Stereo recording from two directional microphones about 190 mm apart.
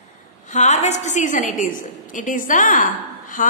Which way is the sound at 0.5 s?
35° left (ahead or behind).